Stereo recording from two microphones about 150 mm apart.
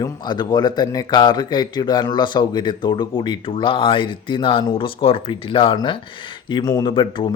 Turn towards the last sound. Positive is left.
turn(degrees=35)  # may be behind; listen again after turning